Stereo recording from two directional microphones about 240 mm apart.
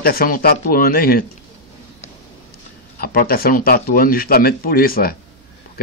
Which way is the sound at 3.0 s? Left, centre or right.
Left.